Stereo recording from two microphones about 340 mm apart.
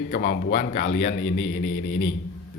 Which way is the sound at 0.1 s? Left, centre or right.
Left.